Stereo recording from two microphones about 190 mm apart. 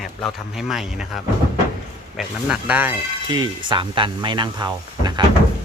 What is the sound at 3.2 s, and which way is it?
Speech, 25° right (ahead or behind).